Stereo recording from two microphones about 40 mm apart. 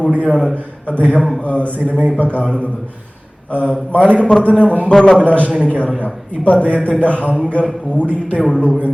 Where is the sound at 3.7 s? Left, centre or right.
Left.